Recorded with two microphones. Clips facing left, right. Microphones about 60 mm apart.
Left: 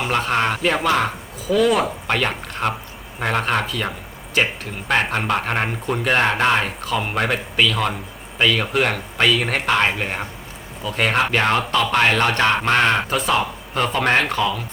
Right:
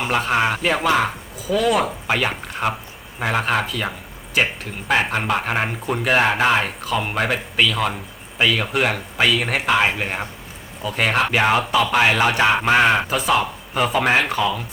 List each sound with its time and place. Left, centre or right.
0.0 s speech: centre